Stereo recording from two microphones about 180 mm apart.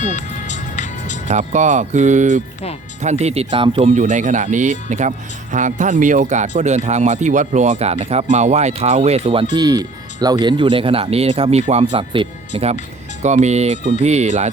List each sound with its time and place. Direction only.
0.0 s music: 40° left (ahead or behind)
1.3 s speech: 40° right (ahead or behind)